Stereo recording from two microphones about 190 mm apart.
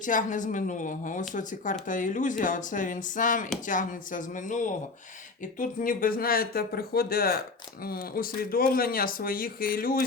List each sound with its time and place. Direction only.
0.0 s speech: 40° left (ahead or behind)